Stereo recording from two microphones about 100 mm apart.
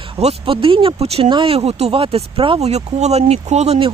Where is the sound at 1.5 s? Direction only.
85° right.